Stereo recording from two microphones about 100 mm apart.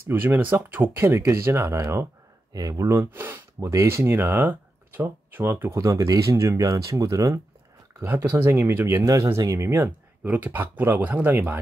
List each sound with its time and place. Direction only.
0.1 s speech: 20° right (ahead or behind)
8.0 s speech: 20° right (ahead or behind)
9.8 s speech: 20° right (ahead or behind)